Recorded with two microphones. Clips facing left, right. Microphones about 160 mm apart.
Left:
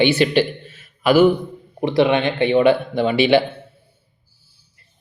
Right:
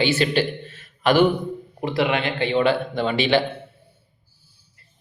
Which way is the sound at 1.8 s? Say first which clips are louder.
Left 6 dB; 20° left (ahead or behind).